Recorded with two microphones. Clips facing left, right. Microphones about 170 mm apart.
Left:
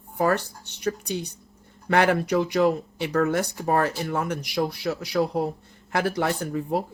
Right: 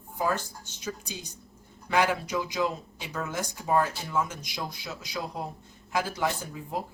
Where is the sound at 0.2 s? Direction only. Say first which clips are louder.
Left 6 dB; 65° left (ahead or behind).